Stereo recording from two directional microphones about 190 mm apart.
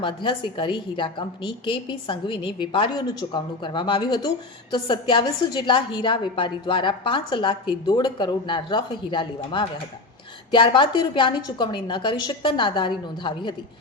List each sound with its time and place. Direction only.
0.0 s a woman's voice: 25° left (ahead or behind)